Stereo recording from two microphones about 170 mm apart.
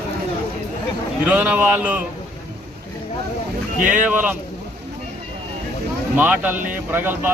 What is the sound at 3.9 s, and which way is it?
Speech, 10° right (ahead or behind).